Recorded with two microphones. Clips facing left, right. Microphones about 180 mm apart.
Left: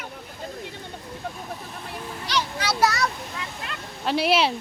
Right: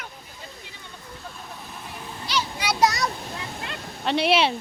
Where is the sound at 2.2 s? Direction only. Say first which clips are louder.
Even; 10° right (ahead or behind).